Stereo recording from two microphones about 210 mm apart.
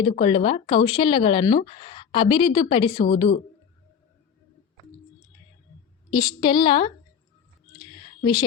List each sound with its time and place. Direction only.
0.0 s speech: 25° left (ahead or behind)
6.1 s speech: 20° left (ahead or behind)
8.2 s speech: 20° left (ahead or behind)